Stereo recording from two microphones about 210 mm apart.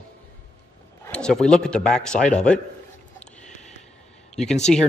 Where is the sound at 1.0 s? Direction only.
5° left (ahead or behind).